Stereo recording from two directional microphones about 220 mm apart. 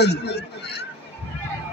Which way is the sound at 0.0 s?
50° left (ahead or behind).